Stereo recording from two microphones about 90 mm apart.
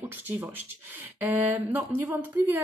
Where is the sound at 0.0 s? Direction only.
20° right (ahead or behind).